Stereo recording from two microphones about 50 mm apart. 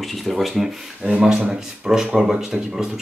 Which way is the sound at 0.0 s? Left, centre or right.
Centre.